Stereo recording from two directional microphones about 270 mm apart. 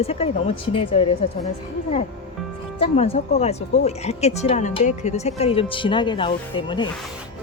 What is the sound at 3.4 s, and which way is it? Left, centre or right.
Speech, left.